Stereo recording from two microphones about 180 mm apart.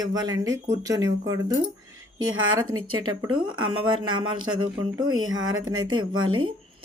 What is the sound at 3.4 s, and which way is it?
Speech, 25° right (ahead or behind).